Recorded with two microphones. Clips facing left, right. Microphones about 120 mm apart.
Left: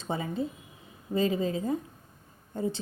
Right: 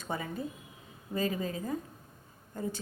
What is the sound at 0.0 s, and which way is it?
A woman's voice, 25° left (ahead or behind).